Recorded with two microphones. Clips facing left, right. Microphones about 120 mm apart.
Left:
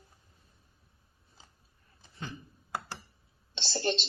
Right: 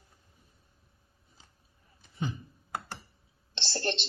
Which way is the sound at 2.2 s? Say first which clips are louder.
Right 7 dB; 20° right (ahead or behind).